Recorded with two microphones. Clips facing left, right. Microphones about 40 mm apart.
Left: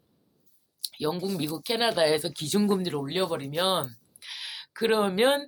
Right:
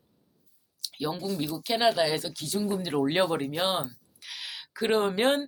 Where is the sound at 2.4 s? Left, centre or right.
Left.